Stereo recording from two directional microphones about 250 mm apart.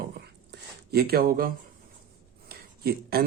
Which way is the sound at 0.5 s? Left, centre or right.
Right.